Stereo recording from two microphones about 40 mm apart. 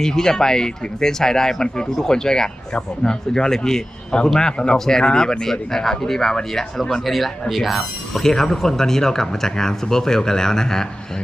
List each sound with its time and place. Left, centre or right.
0.0 s speech: centre
7.0 s speech: centre
8.2 s speech: centre